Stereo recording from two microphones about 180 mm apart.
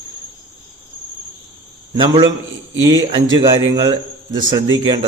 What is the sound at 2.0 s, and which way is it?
A man's voice, 25° right (ahead or behind).